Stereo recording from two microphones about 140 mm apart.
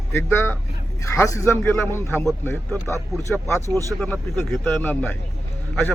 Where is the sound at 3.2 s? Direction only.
20° left (ahead or behind).